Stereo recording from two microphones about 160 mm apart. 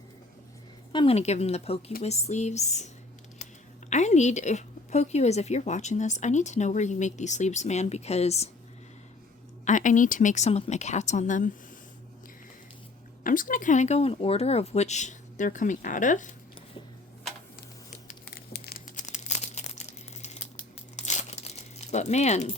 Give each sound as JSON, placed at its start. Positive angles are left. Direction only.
{"t": 0.9, "sound": "a woman's voice", "side_deg": 40}
{"t": 9.6, "sound": "a woman's voice", "side_deg": 50}
{"t": 13.2, "sound": "a woman's voice", "side_deg": 55}
{"t": 17.9, "sound": "a sound", "side_deg": 55}
{"t": 18.5, "sound": "a sound", "side_deg": 75}
{"t": 18.9, "sound": "crumpling", "side_deg": 45}